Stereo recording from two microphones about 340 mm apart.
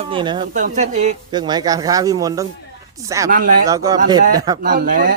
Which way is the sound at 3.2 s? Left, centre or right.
Right.